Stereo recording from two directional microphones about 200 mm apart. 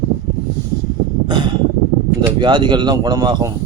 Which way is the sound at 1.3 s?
20° right (ahead or behind).